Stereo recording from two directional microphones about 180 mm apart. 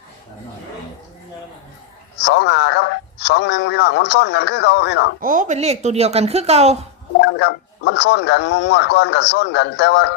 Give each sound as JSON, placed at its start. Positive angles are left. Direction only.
{"t": 2.2, "sound": "speech", "side_deg": 70}
{"t": 5.2, "sound": "speech", "side_deg": -45}
{"t": 7.2, "sound": "speech", "side_deg": 70}